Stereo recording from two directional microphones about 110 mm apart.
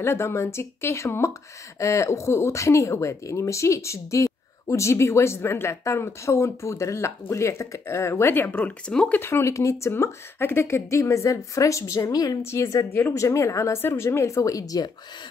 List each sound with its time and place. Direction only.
0.0 s speech: 25° left (ahead or behind)